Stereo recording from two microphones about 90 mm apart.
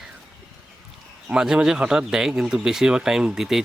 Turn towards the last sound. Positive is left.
turn(degrees=-5)  # may be behind; listen again after turning